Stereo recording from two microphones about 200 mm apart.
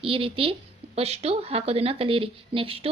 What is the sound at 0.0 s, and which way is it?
Speech, 25° right (ahead or behind).